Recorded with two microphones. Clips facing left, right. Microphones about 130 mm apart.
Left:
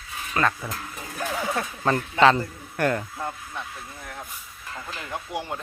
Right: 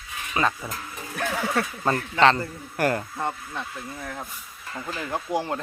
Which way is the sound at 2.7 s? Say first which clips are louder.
Even; 5° right (ahead or behind).